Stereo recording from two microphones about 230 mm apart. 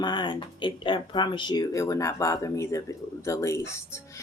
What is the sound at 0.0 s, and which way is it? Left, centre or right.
Speech, centre.